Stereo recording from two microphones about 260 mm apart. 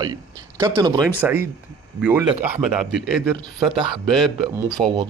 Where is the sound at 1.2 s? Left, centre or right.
Centre.